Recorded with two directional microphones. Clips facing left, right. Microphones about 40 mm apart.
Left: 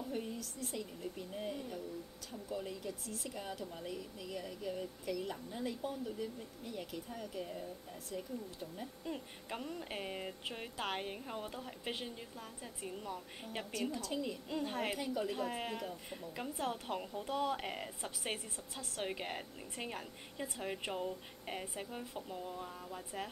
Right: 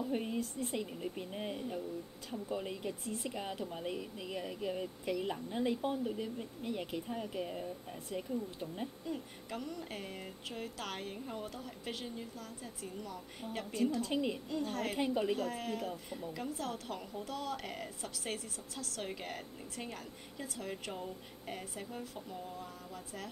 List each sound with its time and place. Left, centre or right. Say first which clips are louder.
0.1 s speech: right 5 dB; right
9.0 s speech: right 2 dB; centre
14.0 s speech: right 4 dB; right
14.5 s speech: right 1 dB; left
15.0 s speech: right 5 dB; right
15.3 s speech: right 2 dB; left